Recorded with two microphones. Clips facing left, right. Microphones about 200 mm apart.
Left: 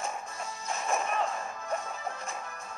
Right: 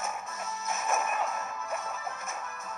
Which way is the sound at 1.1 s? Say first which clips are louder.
Left 1 dB; 30° left (ahead or behind).